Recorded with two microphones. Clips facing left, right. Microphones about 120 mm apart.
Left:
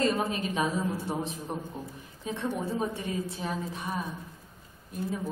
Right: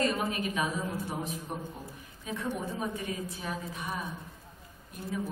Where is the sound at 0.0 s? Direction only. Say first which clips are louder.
Left 2 dB; 30° left (ahead or behind).